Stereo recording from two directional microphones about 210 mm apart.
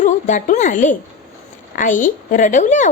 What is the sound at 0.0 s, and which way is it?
A woman's voice, 35° left (ahead or behind).